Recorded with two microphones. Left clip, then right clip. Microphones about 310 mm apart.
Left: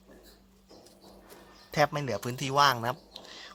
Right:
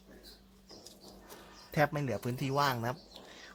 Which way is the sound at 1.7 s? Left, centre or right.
Left.